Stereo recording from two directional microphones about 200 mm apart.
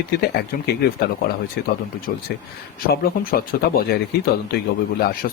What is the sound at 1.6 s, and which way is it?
Speech, 55° left (ahead or behind).